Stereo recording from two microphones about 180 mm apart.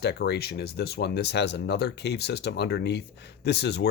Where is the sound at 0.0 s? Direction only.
65° left (ahead or behind).